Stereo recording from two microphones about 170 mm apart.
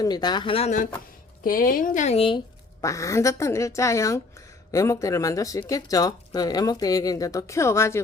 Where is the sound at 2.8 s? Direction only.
20° left (ahead or behind).